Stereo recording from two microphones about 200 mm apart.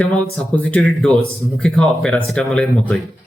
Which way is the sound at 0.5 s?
5° left (ahead or behind).